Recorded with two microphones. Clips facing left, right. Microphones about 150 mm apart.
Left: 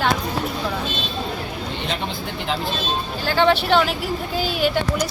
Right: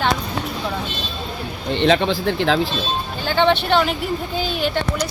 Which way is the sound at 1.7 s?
90° right.